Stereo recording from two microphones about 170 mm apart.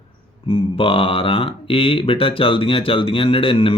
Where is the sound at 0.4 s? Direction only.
30° left (ahead or behind).